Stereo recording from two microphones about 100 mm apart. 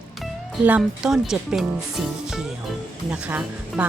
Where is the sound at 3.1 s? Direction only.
15° right (ahead or behind).